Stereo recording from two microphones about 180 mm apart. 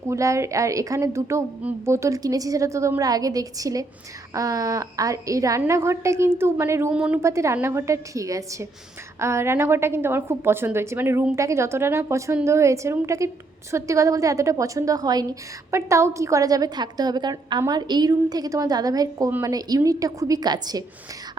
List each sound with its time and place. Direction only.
0.1 s a woman's voice: 15° right (ahead or behind)